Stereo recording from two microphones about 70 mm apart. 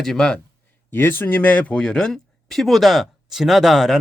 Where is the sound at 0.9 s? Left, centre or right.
Left.